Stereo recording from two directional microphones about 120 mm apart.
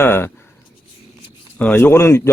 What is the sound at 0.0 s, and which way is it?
Speech, 20° left (ahead or behind).